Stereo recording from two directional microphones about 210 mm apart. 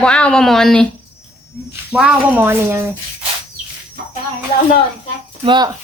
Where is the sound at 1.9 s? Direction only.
5° right (ahead or behind).